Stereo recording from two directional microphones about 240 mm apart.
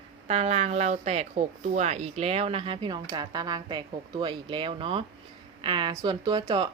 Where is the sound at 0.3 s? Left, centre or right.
Right.